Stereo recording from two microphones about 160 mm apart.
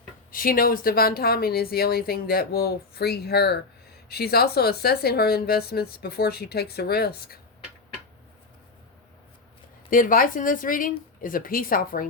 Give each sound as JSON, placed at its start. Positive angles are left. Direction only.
{"t": 0.3, "sound": "speech", "side_deg": 60}
{"t": 9.9, "sound": "speech", "side_deg": 60}